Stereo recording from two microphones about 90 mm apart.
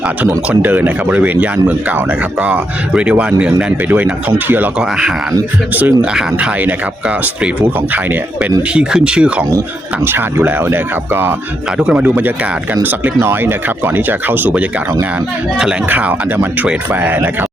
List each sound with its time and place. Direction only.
0.3 s speech: 20° right (ahead or behind)
5.7 s speech: 15° right (ahead or behind)
8.7 s speech: 10° right (ahead or behind)
10.1 s speech: 25° right (ahead or behind)
11.8 s speech: 10° right (ahead or behind)
12.0 s speech: 20° right (ahead or behind)
15.9 s speech: 20° right (ahead or behind)